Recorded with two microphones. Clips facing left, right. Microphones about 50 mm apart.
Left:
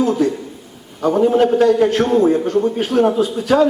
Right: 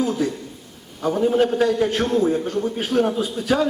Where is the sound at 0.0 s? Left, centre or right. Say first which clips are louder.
Left 6 dB; centre.